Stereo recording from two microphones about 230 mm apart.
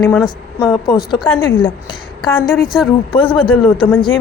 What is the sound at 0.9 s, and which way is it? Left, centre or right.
Speech, centre.